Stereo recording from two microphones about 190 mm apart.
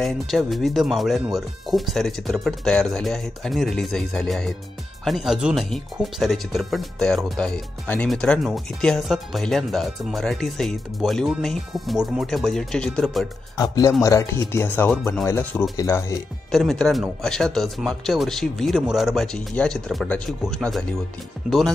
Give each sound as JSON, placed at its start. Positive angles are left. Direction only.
{"t": 0.0, "sound": "speech", "side_deg": 0}
{"t": 13.6, "sound": "speech", "side_deg": 20}
{"t": 16.5, "sound": "speech", "side_deg": 0}